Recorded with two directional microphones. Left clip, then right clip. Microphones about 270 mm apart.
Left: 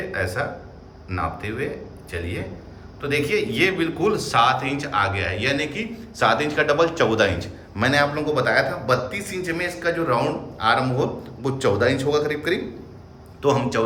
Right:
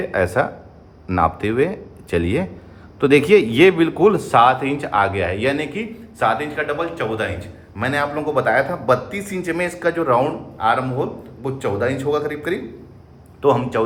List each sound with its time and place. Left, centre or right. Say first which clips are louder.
0.1 s a man's voice: right 8 dB; centre
6.1 s a man's voice: even; centre